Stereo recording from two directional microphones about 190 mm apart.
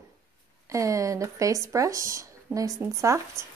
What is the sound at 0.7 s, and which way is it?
Speech, 15° right (ahead or behind).